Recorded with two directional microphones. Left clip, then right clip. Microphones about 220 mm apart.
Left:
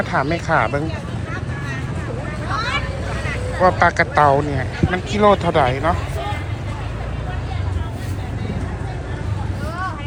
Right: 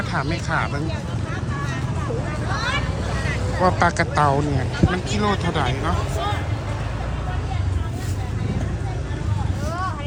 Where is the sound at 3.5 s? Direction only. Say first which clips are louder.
Left 4 dB; 20° right (ahead or behind).